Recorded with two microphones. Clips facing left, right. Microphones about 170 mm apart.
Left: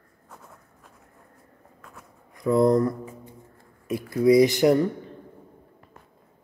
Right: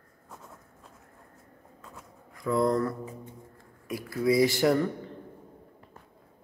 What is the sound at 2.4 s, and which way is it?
Speech, 20° left (ahead or behind).